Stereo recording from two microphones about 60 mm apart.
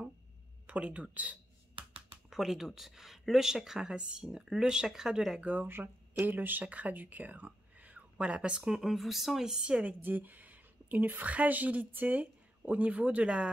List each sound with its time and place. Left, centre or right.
0.7 s speech: right
2.2 s speech: centre
5.4 s speech: right; by 9.8 s centre
9.8 s a woman's voice: right